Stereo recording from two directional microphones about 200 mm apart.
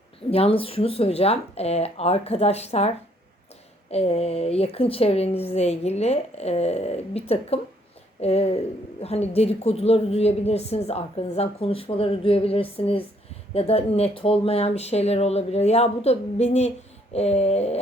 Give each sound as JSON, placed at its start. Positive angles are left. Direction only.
{"t": 0.3, "sound": "speech", "side_deg": 30}
{"t": 3.9, "sound": "speech", "side_deg": 30}